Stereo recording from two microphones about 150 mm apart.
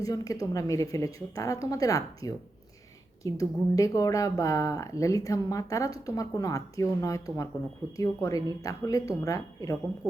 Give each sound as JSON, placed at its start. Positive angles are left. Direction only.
{"t": 0.0, "sound": "speech", "side_deg": 25}